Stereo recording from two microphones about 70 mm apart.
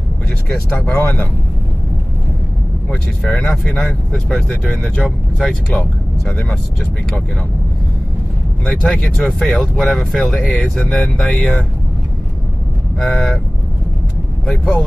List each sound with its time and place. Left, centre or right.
0.5 s speech: centre
1.0 s speech: left
2.9 s speech: centre
8.8 s speech: centre
13.0 s speech: centre
14.4 s speech: centre